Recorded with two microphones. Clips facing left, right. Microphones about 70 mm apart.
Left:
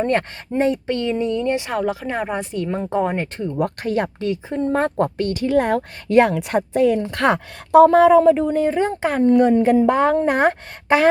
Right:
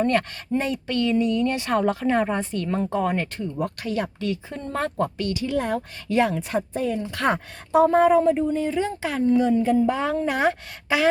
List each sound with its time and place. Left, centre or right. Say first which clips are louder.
0.0 s speech: left 2 dB; left
1.7 s speech: right 1 dB; centre; by 3.2 s left
3.8 s speech: left 5 dB; left
4.3 s speech: left 8 dB; left
4.9 s speech: left 5 dB; left
8.4 s speech: left 5 dB; left